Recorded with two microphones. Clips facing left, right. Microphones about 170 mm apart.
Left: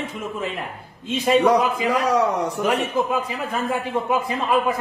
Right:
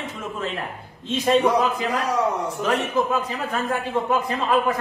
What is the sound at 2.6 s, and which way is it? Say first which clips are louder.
A man's voice: right 1 dB; 10° left (ahead or behind).